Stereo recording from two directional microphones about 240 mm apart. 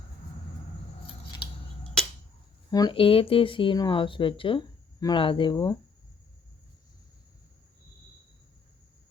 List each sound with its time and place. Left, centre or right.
2.6 s speech: centre